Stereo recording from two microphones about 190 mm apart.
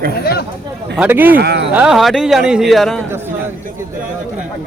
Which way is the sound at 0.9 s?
10° right (ahead or behind).